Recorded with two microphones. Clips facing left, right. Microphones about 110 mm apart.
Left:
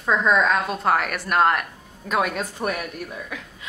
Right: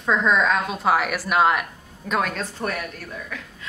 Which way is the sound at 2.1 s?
10° left (ahead or behind).